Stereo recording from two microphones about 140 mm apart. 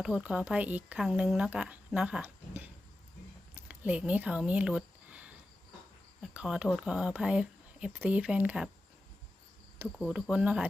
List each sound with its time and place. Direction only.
0.0 s speech: 5° right (ahead or behind)
3.7 s speech: 10° right (ahead or behind)
6.2 s cricket: 5° right (ahead or behind)
6.7 s speech: 5° right (ahead or behind)
9.8 s speech: 5° right (ahead or behind)